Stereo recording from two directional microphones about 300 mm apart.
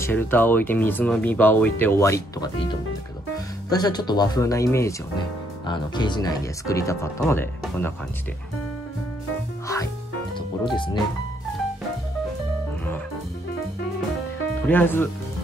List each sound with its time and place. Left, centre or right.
0.0 s speech: centre
10.6 s speech: centre
14.7 s speech: centre